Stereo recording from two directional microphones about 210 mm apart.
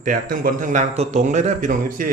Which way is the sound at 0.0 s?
40° right (ahead or behind).